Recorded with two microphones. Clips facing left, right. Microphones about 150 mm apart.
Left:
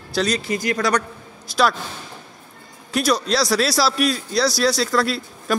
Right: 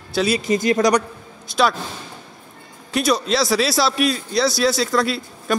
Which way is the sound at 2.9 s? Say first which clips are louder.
Right 1 dB; centre (ahead or behind).